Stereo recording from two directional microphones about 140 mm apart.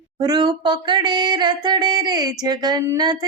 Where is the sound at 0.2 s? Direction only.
30° right (ahead or behind).